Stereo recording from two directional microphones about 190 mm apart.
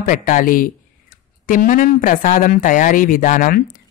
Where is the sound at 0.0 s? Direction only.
45° left (ahead or behind).